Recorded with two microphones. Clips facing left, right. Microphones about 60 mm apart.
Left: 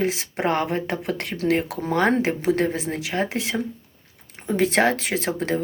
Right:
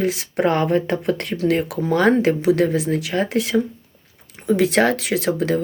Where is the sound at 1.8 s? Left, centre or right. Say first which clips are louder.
Right 5 dB; left.